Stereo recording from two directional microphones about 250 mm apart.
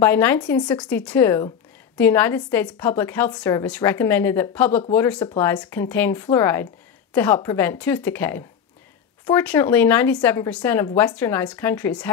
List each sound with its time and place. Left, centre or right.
0.0 s a woman's voice: centre
0.8 s a woman's voice: centre